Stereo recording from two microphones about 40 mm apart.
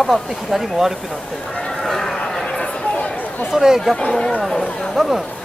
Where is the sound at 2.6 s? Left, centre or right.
Left.